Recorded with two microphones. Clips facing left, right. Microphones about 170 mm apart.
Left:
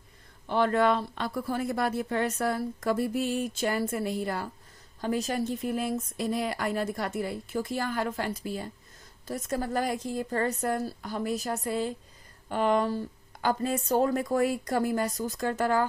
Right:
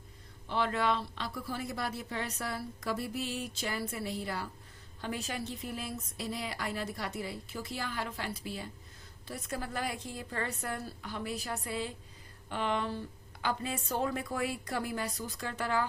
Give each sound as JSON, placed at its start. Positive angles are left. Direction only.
{"t": 0.4, "sound": "speech", "side_deg": 50}